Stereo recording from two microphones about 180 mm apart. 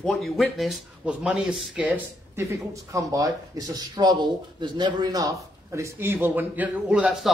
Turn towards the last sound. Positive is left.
turn(degrees=-5)  # may be behind; listen again after turning